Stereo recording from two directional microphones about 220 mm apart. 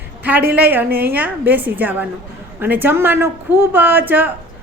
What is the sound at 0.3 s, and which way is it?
A woman's voice, 5° right (ahead or behind).